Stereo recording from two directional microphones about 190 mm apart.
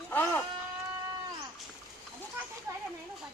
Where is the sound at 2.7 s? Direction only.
15° right (ahead or behind).